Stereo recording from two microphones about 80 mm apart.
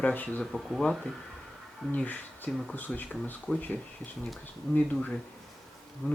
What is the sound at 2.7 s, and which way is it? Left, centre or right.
Speech, left.